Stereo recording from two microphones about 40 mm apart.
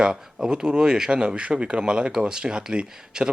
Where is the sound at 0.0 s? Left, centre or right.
Centre.